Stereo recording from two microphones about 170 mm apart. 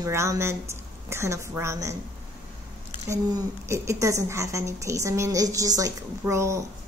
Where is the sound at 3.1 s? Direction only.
15° right (ahead or behind).